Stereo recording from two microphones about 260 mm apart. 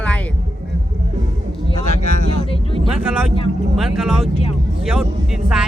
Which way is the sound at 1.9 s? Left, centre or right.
Left.